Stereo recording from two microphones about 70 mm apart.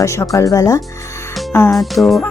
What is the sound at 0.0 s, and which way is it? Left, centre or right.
Speech, left.